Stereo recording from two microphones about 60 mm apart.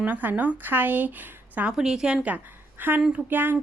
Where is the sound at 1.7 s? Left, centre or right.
Centre.